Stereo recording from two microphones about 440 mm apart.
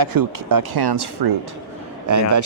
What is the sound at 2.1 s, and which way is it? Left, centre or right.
Speech, right.